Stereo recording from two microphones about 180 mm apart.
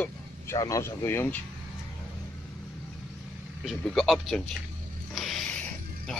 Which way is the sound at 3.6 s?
Centre (ahead or behind).